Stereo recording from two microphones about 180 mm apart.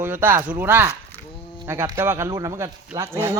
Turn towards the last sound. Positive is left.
turn(degrees=-15)  # may be behind; listen again after turning